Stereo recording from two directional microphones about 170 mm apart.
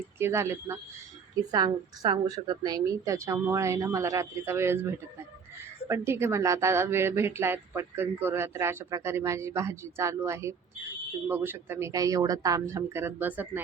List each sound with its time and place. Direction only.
0.2 s speech: 15° right (ahead or behind)